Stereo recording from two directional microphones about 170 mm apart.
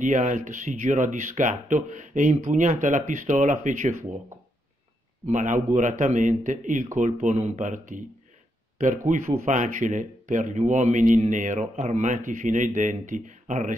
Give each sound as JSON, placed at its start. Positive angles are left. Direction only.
{"t": 0.0, "sound": "speech", "side_deg": -45}
{"t": 5.2, "sound": "speech", "side_deg": -45}